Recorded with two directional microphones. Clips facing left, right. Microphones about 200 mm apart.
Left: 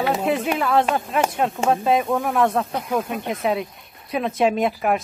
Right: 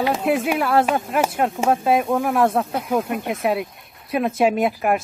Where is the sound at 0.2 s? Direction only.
5° right (ahead or behind).